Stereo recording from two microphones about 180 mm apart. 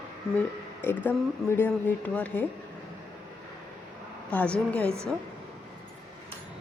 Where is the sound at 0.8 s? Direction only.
10° left (ahead or behind).